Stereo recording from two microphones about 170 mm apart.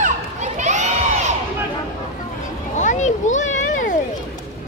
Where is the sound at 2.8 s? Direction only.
45° left (ahead or behind).